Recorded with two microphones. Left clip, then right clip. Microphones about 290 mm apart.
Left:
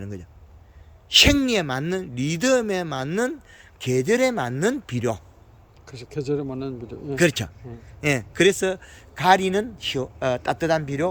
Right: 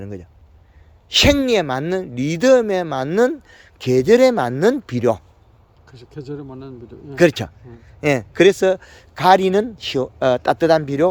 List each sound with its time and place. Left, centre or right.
0.0 s speech: centre
5.8 s a man's voice: left
7.2 s a man's voice: centre